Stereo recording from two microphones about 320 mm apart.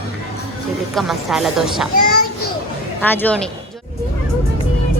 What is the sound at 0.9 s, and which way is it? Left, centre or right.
Speech, centre.